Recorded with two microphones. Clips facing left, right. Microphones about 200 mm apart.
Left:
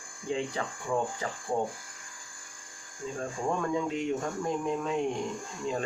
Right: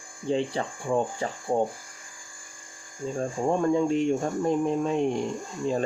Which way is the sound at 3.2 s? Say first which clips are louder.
Right 6 dB; 35° right (ahead or behind).